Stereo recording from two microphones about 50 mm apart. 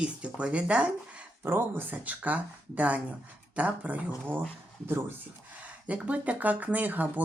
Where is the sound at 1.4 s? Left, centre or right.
Right.